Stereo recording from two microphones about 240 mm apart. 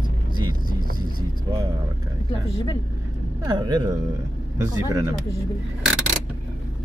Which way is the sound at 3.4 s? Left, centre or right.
Centre.